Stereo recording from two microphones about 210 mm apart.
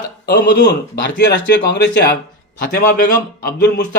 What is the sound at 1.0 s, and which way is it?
A man's voice, 55° left (ahead or behind).